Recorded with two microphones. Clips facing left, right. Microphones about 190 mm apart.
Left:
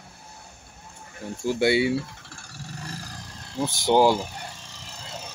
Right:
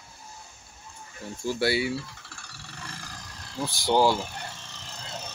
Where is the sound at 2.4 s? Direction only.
45° left (ahead or behind).